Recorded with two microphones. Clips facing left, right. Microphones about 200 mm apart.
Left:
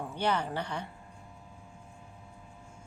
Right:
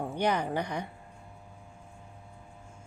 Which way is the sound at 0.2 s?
15° right (ahead or behind).